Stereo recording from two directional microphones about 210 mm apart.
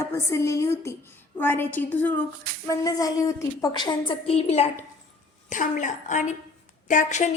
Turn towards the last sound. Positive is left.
turn(degrees=35)  # may be behind; listen again after turning